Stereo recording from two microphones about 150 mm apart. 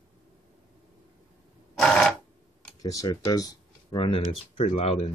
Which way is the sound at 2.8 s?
25° left (ahead or behind).